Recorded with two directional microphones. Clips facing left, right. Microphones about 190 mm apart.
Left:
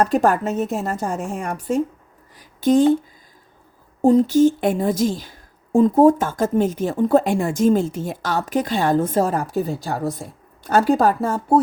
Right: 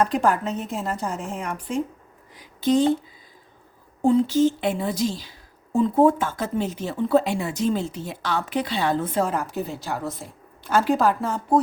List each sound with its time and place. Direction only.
0.0 s a woman's voice: 45° left (ahead or behind)
4.0 s a woman's voice: 45° left (ahead or behind)